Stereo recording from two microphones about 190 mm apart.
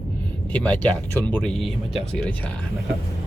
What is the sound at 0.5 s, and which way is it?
Speech, 10° left (ahead or behind).